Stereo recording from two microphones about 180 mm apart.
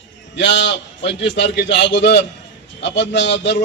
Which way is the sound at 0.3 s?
80° left.